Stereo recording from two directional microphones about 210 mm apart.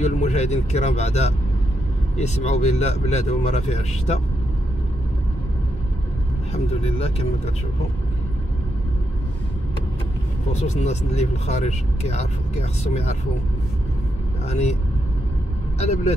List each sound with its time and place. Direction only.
0.0 s speech: 35° left (ahead or behind)
6.5 s speech: 30° left (ahead or behind)
10.5 s speech: 30° left (ahead or behind)
14.5 s speech: 30° left (ahead or behind)
15.8 s speech: 30° left (ahead or behind)